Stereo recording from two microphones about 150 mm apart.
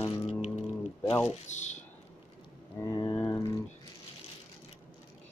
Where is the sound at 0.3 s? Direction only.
50° left (ahead or behind).